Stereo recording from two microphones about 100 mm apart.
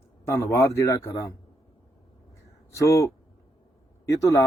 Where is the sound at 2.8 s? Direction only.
30° left (ahead or behind).